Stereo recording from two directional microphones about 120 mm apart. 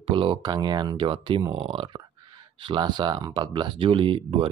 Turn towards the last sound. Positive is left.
turn(degrees=-50)  # may be behind; listen again after turning